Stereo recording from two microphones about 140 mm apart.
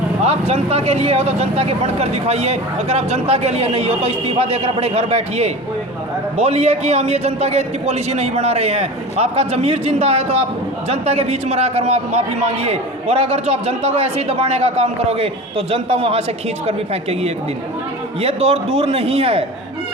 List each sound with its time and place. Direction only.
0.3 s a man's voice: 50° right (ahead or behind)